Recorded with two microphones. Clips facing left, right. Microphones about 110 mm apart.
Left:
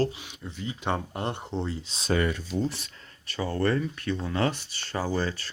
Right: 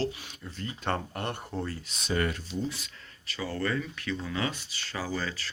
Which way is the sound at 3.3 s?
30° left (ahead or behind).